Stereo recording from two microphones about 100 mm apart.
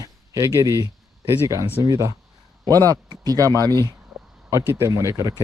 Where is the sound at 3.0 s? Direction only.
40° right (ahead or behind).